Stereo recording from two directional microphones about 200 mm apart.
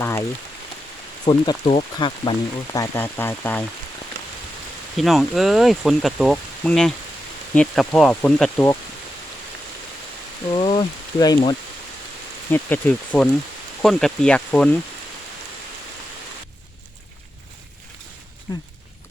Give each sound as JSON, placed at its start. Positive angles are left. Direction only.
{"t": 0.0, "sound": "rain on surface", "side_deg": 15}
{"t": 1.3, "sound": "speech", "side_deg": 25}
{"t": 4.9, "sound": "speech", "side_deg": 0}
{"t": 10.5, "sound": "speech", "side_deg": 30}
{"t": 12.5, "sound": "speech", "side_deg": 10}
{"t": 18.5, "sound": "speech", "side_deg": 20}